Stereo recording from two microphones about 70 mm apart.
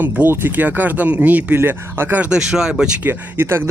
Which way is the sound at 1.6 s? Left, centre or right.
Right.